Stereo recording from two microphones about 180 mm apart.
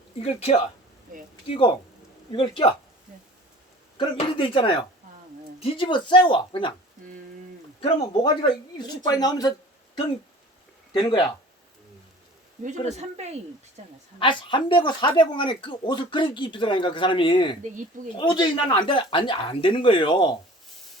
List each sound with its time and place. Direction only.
0.2 s speech: 35° left (ahead or behind)
3.9 s speech: 30° left (ahead or behind)
7.8 s speech: 30° left (ahead or behind)
13.0 s speech: 35° right (ahead or behind)
14.2 s speech: 25° left (ahead or behind)